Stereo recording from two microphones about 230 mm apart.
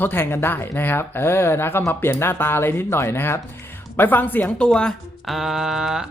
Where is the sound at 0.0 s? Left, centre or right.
Centre.